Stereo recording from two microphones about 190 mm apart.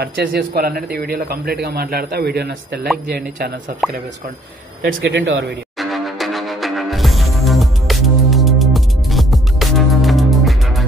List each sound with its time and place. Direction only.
0.0 s a man's voice: 55° right (ahead or behind)
4.8 s a man's voice: 60° right (ahead or behind)
5.8 s music: centre (ahead or behind)